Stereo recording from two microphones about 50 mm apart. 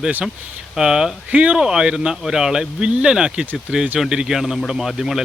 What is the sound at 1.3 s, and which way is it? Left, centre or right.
Speech, right.